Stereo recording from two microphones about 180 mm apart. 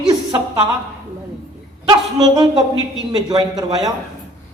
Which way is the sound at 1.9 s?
20° right (ahead or behind).